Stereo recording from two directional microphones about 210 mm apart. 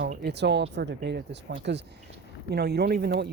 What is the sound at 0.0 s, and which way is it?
Speech, 50° right (ahead or behind).